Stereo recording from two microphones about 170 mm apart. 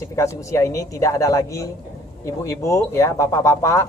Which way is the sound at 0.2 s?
15° left (ahead or behind).